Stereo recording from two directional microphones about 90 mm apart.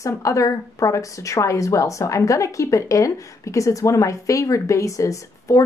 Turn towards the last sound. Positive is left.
turn(degrees=35)  # may be behind; listen again after turning